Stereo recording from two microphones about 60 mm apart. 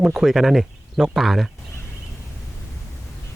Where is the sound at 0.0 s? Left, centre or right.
Centre.